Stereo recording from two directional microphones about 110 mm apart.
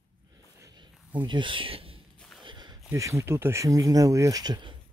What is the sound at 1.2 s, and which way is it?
Speech, 45° right (ahead or behind).